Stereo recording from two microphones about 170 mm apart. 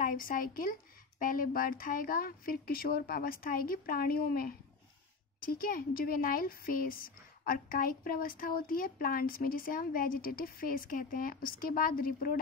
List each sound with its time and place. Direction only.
0.0 s a woman's voice: 55° left (ahead or behind)